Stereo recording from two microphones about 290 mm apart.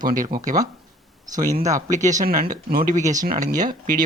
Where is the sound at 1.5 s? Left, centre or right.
Centre.